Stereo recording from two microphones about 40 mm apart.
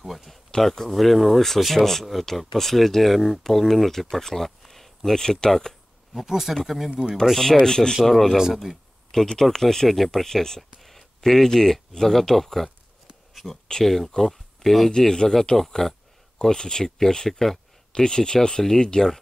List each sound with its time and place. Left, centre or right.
0.0 s a sound: centre
0.6 s speech: centre
6.2 s speech: centre
7.6 s speech: centre
8.0 s speech: centre
13.3 s a sound: centre
13.8 s speech: centre
14.9 s speech: centre
17.9 s speech: centre